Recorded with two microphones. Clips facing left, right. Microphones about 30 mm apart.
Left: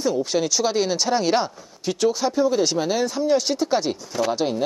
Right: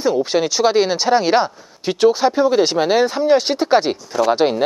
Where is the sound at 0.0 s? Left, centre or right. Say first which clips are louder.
Right 5 dB; right.